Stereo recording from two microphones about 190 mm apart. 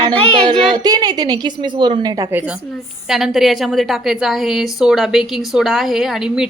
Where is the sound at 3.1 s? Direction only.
Centre (ahead or behind).